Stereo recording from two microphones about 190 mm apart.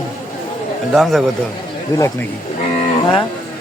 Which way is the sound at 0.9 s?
Centre (ahead or behind).